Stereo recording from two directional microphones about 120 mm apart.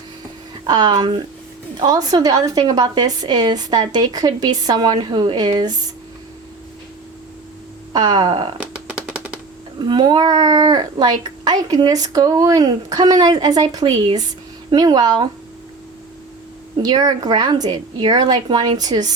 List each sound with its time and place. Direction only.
0.7 s a child's voice: 35° right (ahead or behind)
7.9 s a child's voice: 35° right (ahead or behind)
8.5 s music: 10° right (ahead or behind)
9.7 s a child's voice: 35° right (ahead or behind)
16.8 s a child's voice: 35° right (ahead or behind)